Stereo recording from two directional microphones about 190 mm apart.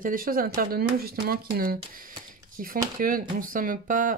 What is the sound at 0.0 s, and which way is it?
Speech, 50° right (ahead or behind).